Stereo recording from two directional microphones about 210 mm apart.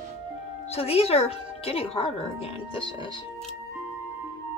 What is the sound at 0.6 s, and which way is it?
A woman's voice, 30° left (ahead or behind).